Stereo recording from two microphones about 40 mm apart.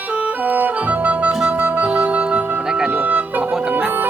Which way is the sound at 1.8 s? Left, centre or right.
Right.